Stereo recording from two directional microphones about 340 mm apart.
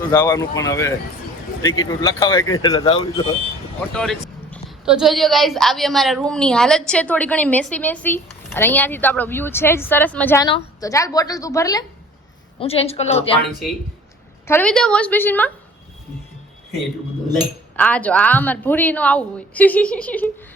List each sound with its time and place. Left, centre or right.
0.1 s speech: centre
3.9 s a woman's voice: centre
14.4 s a woman's voice: centre
17.7 s a woman's voice: centre